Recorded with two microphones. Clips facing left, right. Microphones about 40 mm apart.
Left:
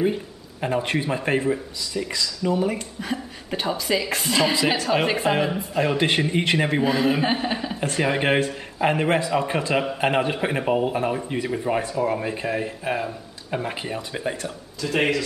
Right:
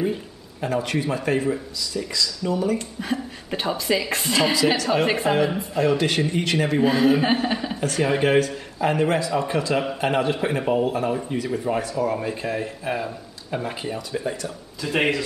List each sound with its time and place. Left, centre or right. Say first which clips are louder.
0.6 s a man's voice: even; left
3.0 s a woman's voice: right 2 dB; centre
5.8 s a man's voice: right 1 dB; left
6.8 s a man's voice: right 2 dB; centre
8.2 s a man's voice: right 2 dB; left
14.1 s a man's voice: right 1 dB; left
14.8 s speech: even; centre